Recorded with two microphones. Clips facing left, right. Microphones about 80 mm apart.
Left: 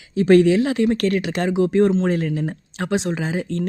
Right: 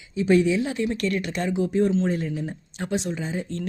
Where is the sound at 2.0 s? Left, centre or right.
Left.